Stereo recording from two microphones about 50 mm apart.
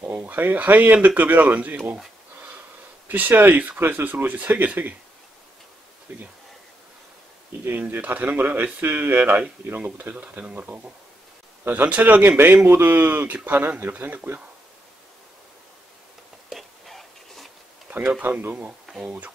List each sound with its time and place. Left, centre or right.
0.0 s speech: right
3.1 s speech: right
8.0 s speech: right
16.4 s whispering: centre
17.8 s a sound: right
18.5 s speech: right